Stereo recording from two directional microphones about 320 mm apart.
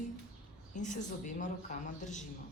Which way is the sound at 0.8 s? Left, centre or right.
Left.